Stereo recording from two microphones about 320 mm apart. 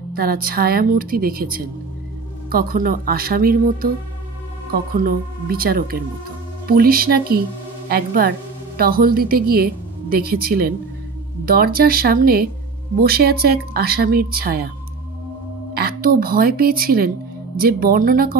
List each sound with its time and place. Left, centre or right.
0.1 s a woman's voice: right
15.7 s speech: right